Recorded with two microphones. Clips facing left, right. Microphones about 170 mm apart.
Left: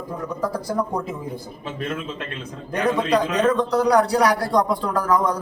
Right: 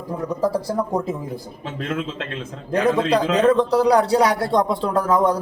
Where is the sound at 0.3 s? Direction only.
30° right (ahead or behind).